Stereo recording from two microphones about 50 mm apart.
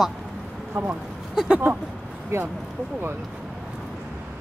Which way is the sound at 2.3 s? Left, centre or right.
Right.